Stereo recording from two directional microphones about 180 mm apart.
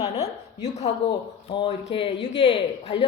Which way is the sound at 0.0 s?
35° left (ahead or behind).